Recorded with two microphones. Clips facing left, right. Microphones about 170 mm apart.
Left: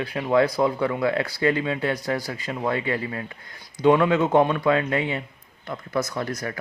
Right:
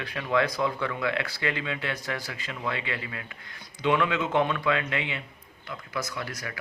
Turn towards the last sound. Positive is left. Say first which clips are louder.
# left 7 dB
turn(degrees=45)  # may be behind; listen again after turning